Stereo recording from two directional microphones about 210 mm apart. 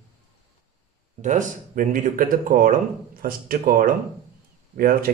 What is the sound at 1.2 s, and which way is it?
Speech, 35° right (ahead or behind).